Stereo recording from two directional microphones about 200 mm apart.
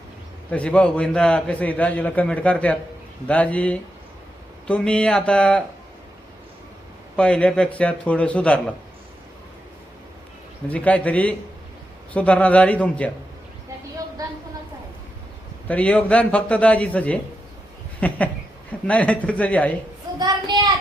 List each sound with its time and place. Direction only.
0.5 s a man's voice: 5° left (ahead or behind)
7.2 s a man's voice: 5° left (ahead or behind)
10.7 s a man's voice: 5° left (ahead or behind)
15.6 s a man's voice: 5° left (ahead or behind)
20.1 s a sound: 20° right (ahead or behind)